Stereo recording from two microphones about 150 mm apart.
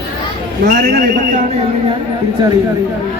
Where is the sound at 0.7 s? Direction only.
75° right (ahead or behind).